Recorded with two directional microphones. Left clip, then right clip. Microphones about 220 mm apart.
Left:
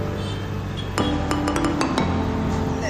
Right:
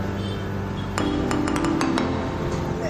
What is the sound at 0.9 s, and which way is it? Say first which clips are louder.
Music: left 1 dB; centre (ahead or behind).